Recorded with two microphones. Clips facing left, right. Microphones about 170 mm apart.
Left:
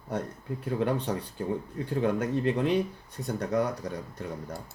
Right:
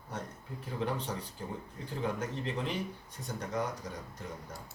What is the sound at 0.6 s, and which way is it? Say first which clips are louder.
A man's voice: left 7 dB; 60° left (ahead or behind).